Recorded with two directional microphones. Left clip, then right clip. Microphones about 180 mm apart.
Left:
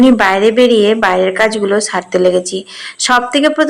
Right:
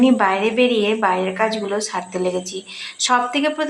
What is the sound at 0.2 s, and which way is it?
A woman's voice, 30° left (ahead or behind).